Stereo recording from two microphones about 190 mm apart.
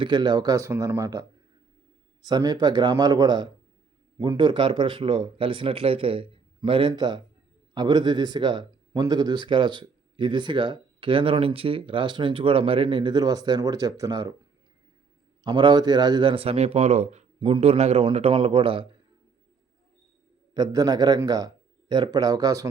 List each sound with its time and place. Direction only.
0.0 s speech: 25° right (ahead or behind)
2.2 s speech: 20° right (ahead or behind)
15.4 s speech: 25° right (ahead or behind)
20.5 s a man's voice: 20° right (ahead or behind)